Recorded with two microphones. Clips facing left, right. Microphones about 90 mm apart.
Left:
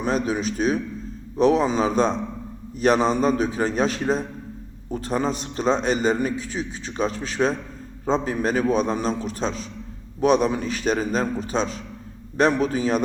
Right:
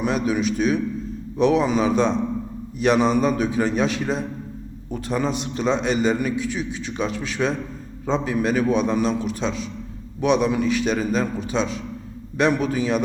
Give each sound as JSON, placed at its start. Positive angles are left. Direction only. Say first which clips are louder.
{"t": 0.0, "sound": "a man's voice", "louder": "right 2 dB", "side_deg": 35}